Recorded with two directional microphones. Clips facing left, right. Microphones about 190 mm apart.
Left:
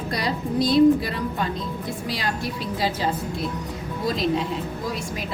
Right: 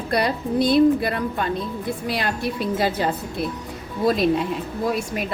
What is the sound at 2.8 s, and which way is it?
Speech, 55° right (ahead or behind).